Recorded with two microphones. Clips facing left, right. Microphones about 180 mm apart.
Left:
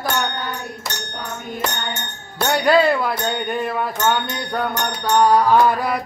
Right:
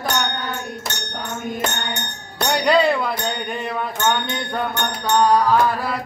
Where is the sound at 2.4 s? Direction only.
5° left (ahead or behind).